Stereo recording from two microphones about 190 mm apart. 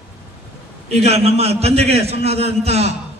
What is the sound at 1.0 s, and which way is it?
A man's voice, 35° right (ahead or behind).